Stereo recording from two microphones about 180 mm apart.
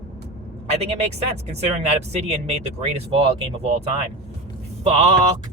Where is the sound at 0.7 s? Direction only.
35° right (ahead or behind).